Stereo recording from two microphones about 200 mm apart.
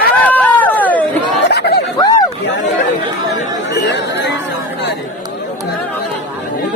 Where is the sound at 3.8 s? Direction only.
60° left (ahead or behind).